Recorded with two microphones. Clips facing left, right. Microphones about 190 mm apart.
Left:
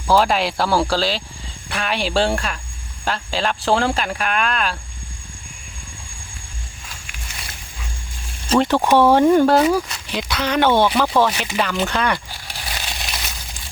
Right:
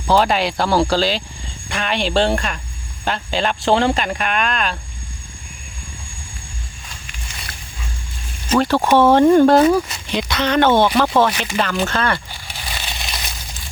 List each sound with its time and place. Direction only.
0.1 s speech: centre (ahead or behind)
8.4 s speech: 20° left (ahead or behind)
12.5 s crushing: centre (ahead or behind)